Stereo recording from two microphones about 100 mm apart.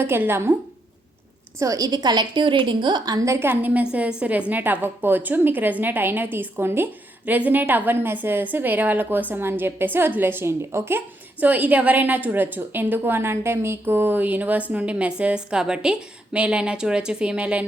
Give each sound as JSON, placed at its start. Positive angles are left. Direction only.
{"t": 0.0, "sound": "a woman's voice", "side_deg": -25}
{"t": 1.5, "sound": "a woman's voice", "side_deg": -35}